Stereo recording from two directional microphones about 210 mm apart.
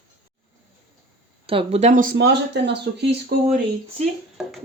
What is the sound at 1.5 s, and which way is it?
Speech, 30° right (ahead or behind).